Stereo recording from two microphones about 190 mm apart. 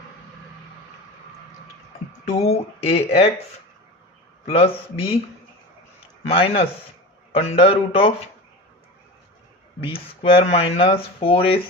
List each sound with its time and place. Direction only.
2.4 s speech: 30° left (ahead or behind)
4.5 s speech: 30° left (ahead or behind)
6.2 s speech: 30° left (ahead or behind)
9.8 s speech: 30° left (ahead or behind)